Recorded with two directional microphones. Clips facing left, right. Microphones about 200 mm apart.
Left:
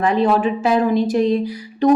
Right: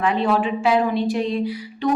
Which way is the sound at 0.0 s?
40° left (ahead or behind).